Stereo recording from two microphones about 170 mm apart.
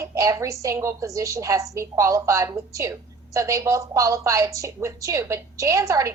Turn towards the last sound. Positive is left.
turn(degrees=-20)  # may be behind; listen again after turning